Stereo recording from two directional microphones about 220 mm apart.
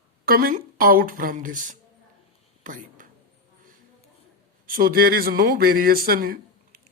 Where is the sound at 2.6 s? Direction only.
35° right (ahead or behind).